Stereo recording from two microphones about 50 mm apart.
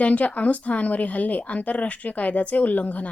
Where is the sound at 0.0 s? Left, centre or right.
Left.